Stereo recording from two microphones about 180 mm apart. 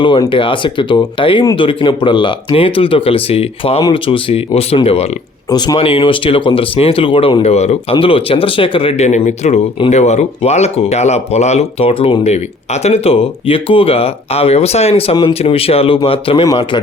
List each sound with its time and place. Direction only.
0.0 s speech: 25° left (ahead or behind)